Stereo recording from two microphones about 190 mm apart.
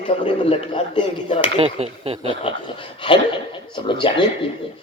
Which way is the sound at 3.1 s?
25° left (ahead or behind).